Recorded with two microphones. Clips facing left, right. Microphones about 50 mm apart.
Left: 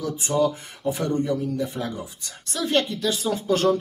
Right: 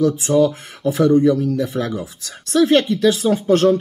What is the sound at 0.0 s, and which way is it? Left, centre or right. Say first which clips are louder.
Speech: right 8 dB; right.